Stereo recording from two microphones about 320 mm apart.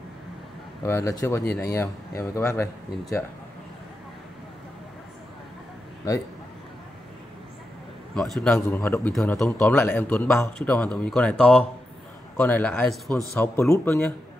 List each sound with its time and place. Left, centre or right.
0.8 s speech: centre
8.1 s a man's voice: centre